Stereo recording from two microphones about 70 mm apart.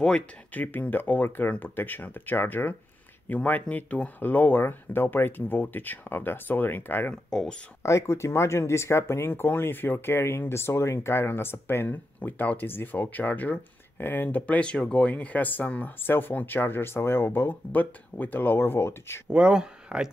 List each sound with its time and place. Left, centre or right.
0.5 s speech: left
7.2 s speech: centre
7.8 s speech: left
19.2 s speech: centre